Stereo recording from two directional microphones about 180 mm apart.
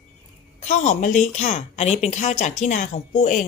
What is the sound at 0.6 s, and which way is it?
A woman's voice, 40° left (ahead or behind).